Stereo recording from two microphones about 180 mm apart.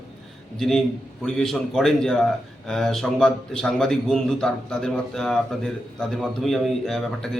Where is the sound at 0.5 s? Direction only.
Centre (ahead or behind).